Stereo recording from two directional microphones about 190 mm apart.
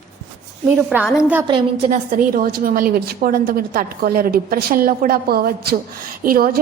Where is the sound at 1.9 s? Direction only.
45° right (ahead or behind).